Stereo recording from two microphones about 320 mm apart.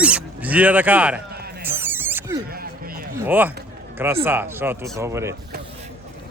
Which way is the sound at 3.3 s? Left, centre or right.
Centre.